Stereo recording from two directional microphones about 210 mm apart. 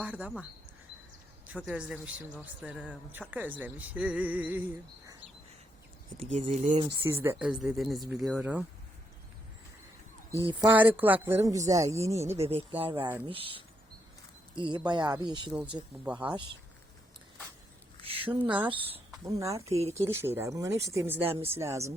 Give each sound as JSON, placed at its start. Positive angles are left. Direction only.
{"t": 0.0, "sound": "a woman's voice", "side_deg": -5}
{"t": 1.5, "sound": "a woman's voice", "side_deg": -5}
{"t": 6.1, "sound": "speech", "side_deg": -30}
{"t": 7.0, "sound": "speech", "side_deg": -10}
{"t": 10.6, "sound": "a woman's voice", "side_deg": -10}
{"t": 12.5, "sound": "speech", "side_deg": -25}
{"t": 15.5, "sound": "speech", "side_deg": -5}
{"t": 18.2, "sound": "speech", "side_deg": -10}
{"t": 18.7, "sound": "speech", "side_deg": -25}
{"t": 19.2, "sound": "a woman's voice", "side_deg": -15}